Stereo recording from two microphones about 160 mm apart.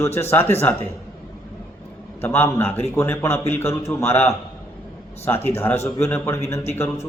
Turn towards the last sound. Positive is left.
turn(degrees=15)  # may be behind; listen again after turning